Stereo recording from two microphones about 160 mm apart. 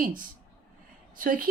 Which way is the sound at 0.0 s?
60° right (ahead or behind).